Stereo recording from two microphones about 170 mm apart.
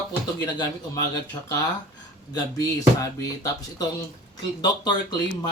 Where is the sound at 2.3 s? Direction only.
20° left (ahead or behind).